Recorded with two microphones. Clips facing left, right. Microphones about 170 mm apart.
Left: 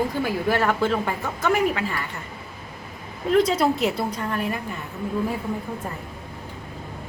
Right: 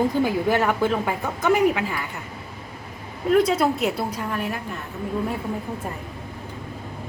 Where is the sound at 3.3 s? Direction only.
5° right (ahead or behind).